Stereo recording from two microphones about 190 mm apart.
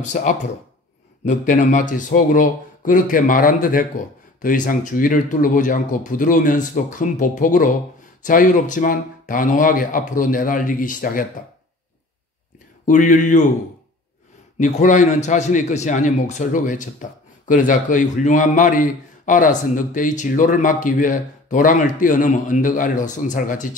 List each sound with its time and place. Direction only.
0.0 s a man's voice: 40° left (ahead or behind)
12.8 s a man's voice: 45° left (ahead or behind)
14.6 s a man's voice: 40° left (ahead or behind)